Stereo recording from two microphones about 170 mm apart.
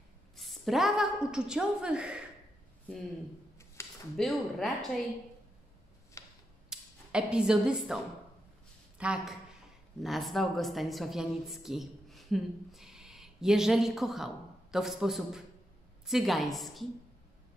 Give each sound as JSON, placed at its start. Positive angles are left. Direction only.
{"t": 0.4, "sound": "a woman's voice", "side_deg": 0}
{"t": 3.8, "sound": "a sound", "side_deg": 15}
{"t": 4.2, "sound": "a woman's voice", "side_deg": 0}
{"t": 6.2, "sound": "tick-tock", "side_deg": 20}
{"t": 6.7, "sound": "a woman's voice", "side_deg": -5}